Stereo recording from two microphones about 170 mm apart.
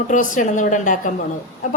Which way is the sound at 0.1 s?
50° left (ahead or behind).